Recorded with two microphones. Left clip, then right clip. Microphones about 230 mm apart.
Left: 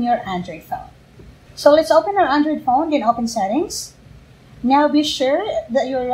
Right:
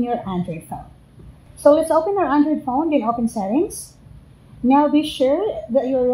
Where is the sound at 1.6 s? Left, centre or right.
Right.